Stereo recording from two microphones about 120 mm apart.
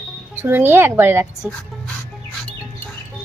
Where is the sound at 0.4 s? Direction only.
20° right (ahead or behind).